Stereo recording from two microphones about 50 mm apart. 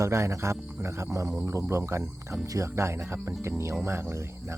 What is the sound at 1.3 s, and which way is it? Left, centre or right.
Speech, right.